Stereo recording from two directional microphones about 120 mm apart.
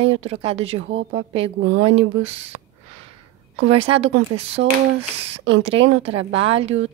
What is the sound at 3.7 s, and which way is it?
Speech, 55° right (ahead or behind).